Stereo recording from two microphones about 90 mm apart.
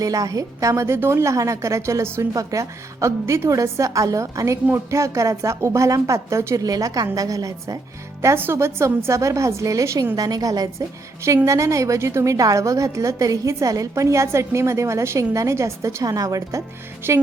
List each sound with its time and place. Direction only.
0.0 s a woman's voice: 40° right (ahead or behind)
8.2 s a woman's voice: 30° right (ahead or behind)